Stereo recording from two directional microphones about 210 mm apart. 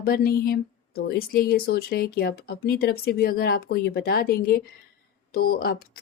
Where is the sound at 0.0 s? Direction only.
45° left (ahead or behind).